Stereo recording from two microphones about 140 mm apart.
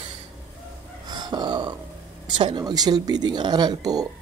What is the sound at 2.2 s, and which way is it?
Speech, 35° right (ahead or behind).